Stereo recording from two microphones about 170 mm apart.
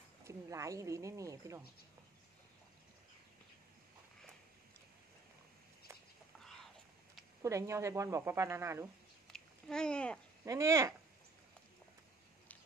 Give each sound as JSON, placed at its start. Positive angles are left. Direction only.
{"t": 0.2, "sound": "speech", "side_deg": -15}
{"t": 6.4, "sound": "whispering", "side_deg": 5}
{"t": 7.4, "sound": "a woman's voice", "side_deg": -15}
{"t": 9.3, "sound": "a sound", "side_deg": 5}
{"t": 10.4, "sound": "a woman's voice", "side_deg": -20}